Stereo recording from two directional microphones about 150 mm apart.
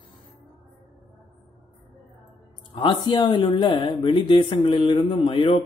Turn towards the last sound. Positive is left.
turn(degrees=35)  # may be behind; listen again after turning